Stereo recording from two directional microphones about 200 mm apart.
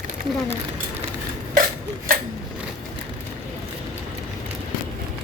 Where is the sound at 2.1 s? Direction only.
45° right (ahead or behind).